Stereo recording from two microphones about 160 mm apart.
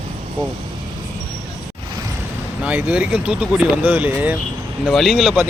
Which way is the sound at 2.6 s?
10° right (ahead or behind).